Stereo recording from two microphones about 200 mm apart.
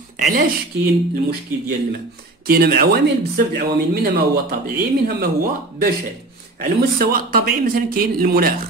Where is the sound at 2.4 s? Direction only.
50° right (ahead or behind).